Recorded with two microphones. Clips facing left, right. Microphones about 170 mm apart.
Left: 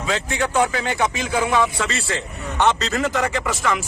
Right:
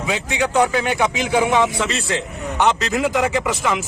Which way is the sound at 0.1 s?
15° right (ahead or behind).